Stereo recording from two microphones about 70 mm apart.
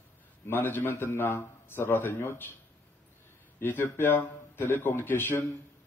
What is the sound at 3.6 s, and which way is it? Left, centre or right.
A man's voice, left.